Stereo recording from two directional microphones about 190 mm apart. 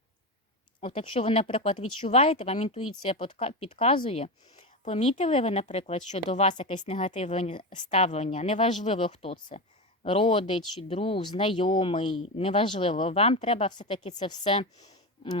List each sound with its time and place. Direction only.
0.8 s a woman's voice: 30° left (ahead or behind)